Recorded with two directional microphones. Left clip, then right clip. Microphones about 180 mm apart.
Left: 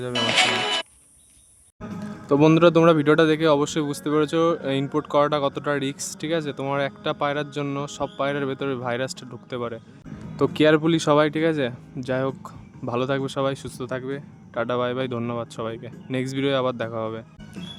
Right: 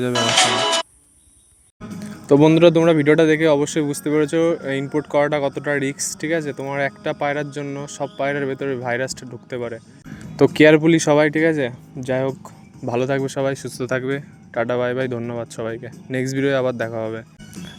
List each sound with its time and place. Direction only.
0.0 s speech: 10° right (ahead or behind)
1.8 s music: 55° right (ahead or behind)
2.6 s speech: centre (ahead or behind)
10.3 s speech: 15° right (ahead or behind)
14.5 s speech: 5° right (ahead or behind)